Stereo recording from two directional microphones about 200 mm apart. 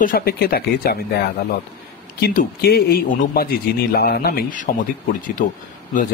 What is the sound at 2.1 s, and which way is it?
Speech, 50° left (ahead or behind).